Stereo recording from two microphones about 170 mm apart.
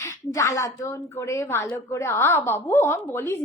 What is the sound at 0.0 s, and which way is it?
A woman's voice, 15° left (ahead or behind).